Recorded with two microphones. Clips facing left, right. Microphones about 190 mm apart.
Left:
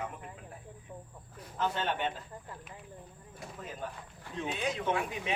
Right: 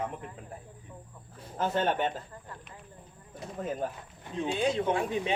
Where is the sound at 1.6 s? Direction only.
45° right (ahead or behind).